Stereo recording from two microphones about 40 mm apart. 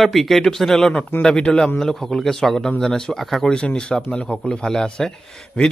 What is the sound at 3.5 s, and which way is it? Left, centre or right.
Speech, left.